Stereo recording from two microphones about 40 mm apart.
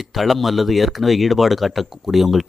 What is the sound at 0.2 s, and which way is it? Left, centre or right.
Speech, centre.